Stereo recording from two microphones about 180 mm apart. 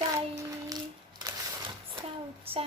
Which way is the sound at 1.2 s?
25° right (ahead or behind).